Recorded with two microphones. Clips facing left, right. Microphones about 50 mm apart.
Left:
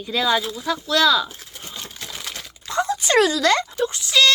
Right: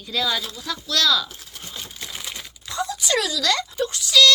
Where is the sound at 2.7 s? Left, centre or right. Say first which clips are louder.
Left 5 dB; left.